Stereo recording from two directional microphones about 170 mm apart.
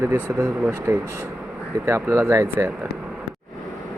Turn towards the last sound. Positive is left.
turn(degrees=-15)  # may be behind; listen again after turning